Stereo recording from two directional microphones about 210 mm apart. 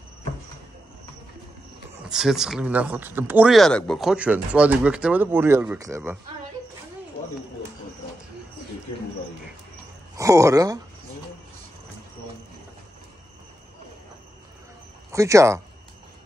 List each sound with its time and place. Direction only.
2.0 s speech: centre (ahead or behind)
10.1 s speech: 15° right (ahead or behind)
15.0 s speech: 15° right (ahead or behind)